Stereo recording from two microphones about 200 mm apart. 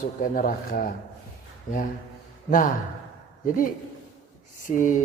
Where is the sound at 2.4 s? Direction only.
40° left (ahead or behind).